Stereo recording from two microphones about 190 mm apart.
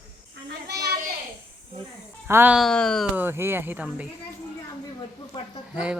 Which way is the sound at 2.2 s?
10° right (ahead or behind).